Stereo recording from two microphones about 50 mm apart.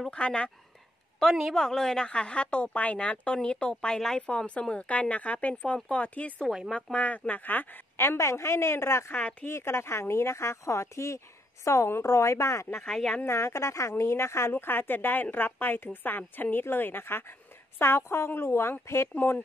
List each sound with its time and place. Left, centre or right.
0.1 s speech: centre
1.2 s a woman's voice: centre
1.5 s speech: centre
2.0 s speech: left
8.0 s speech: left
9.1 s speech: left
9.5 s speech: left
12.0 s speech: left
12.8 s speech: centre
13.2 s a woman's voice: left